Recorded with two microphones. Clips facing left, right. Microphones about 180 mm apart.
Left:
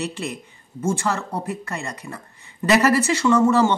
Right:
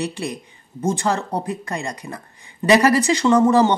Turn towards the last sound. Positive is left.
turn(degrees=-15)  # may be behind; listen again after turning